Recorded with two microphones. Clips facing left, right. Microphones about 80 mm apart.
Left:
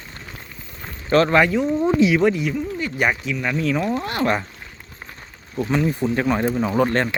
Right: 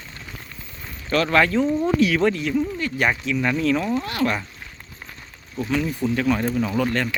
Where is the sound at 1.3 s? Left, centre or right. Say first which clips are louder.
Left 1 dB; centre.